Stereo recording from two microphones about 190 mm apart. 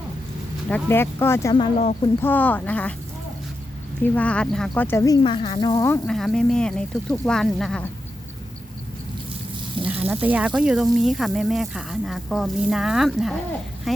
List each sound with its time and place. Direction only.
0.7 s speech: 10° left (ahead or behind)
1.5 s speech: 35° left (ahead or behind)
2.2 s speech: 10° left (ahead or behind)
4.0 s speech: 10° left (ahead or behind)
5.9 s speech: centre (ahead or behind)
9.8 s speech: 10° right (ahead or behind)